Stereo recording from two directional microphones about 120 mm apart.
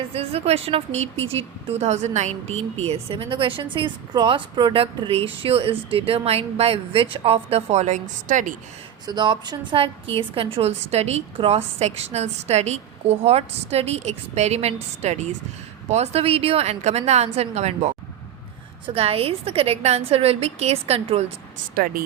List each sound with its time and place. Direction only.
0.1 s a woman's voice: 55° right (ahead or behind); by 8.5 s 90° right
9.0 s a woman's voice: 40° right (ahead or behind); by 15.4 s 70° right (ahead or behind)
15.9 s a woman's voice: 60° right (ahead or behind)
18.9 s a woman's voice: 55° right (ahead or behind)